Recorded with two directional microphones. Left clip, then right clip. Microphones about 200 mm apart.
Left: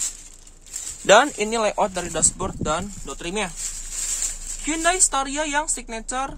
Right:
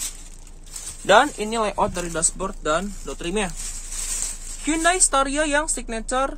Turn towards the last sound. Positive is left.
turn(degrees=0)  # may be behind; listen again after turning